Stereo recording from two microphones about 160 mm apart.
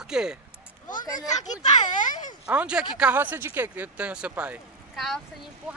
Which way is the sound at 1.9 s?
55° left (ahead or behind).